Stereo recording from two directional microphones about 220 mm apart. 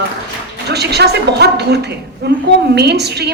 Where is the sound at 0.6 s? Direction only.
50° right (ahead or behind).